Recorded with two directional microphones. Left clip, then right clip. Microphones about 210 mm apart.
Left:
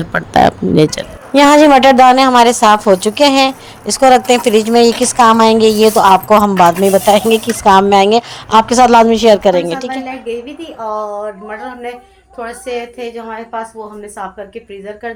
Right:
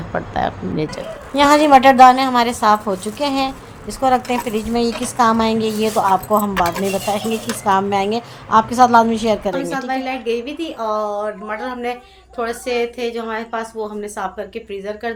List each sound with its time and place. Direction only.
0.1 s speech: 45° left (ahead or behind); by 9.9 s 20° left (ahead or behind)
10.2 s a woman's voice: 50° right (ahead or behind)
10.9 s a woman's voice: 5° right (ahead or behind)